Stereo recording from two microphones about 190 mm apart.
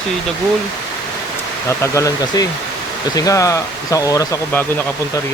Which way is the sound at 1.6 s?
15° left (ahead or behind).